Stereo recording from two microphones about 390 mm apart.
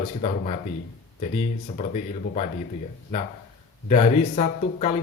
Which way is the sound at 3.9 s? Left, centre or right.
Centre.